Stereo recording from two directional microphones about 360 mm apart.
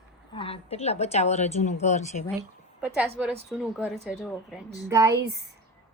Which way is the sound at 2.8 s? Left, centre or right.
Centre.